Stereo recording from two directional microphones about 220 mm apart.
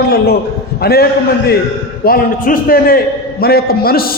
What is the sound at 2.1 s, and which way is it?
A man's voice, 40° left (ahead or behind).